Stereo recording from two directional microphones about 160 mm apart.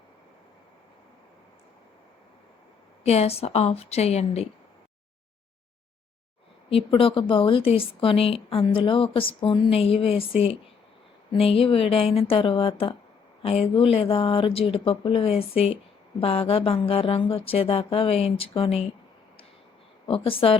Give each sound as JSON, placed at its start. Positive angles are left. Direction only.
{"t": 3.0, "sound": "a woman's voice", "side_deg": 40}
{"t": 6.7, "sound": "a woman's voice", "side_deg": 35}
{"t": 20.1, "sound": "a woman's voice", "side_deg": 35}